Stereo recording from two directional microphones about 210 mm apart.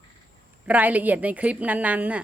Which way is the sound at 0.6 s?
5° right (ahead or behind).